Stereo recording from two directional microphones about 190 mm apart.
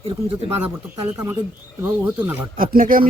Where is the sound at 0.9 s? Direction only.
15° right (ahead or behind).